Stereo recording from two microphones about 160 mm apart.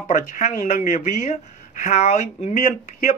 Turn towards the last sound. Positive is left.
turn(degrees=50)  # may be behind; listen again after turning